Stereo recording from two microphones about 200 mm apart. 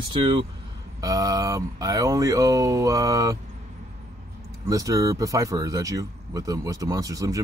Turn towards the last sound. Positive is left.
turn(degrees=-15)  # may be behind; listen again after turning